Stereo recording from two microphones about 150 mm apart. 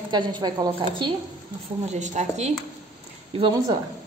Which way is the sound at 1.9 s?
50° right (ahead or behind).